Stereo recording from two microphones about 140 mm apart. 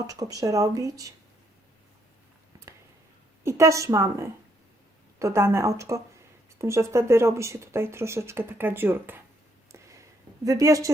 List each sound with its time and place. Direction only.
0.1 s speech: 25° right (ahead or behind)
3.4 s speech: 20° right (ahead or behind)
9.7 s a sound: 20° right (ahead or behind)